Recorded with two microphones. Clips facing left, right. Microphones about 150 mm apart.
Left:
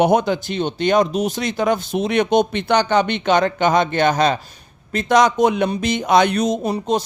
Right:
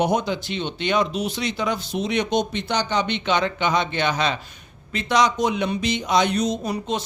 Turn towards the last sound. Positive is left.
turn(degrees=40)  # may be behind; listen again after turning